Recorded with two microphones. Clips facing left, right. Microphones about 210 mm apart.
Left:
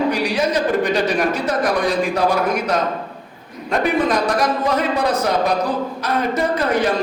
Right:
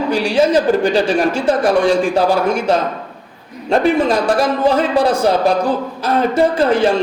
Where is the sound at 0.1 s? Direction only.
30° right (ahead or behind).